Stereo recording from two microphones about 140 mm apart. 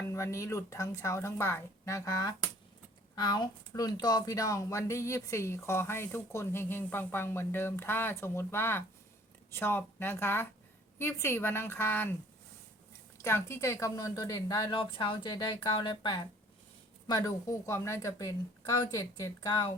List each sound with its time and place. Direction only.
0.1 s a woman's voice: 20° left (ahead or behind)
13.2 s speech: 20° left (ahead or behind)